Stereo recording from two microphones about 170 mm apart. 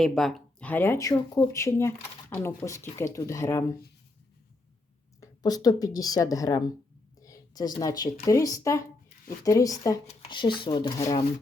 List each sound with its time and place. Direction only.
0.0 s speech: centre (ahead or behind)
5.2 s speech: 20° left (ahead or behind)
7.2 s a sound: 20° left (ahead or behind)
7.8 s speech: 20° left (ahead or behind)